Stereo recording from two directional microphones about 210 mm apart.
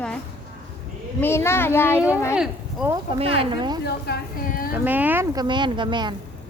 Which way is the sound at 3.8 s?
50° left (ahead or behind).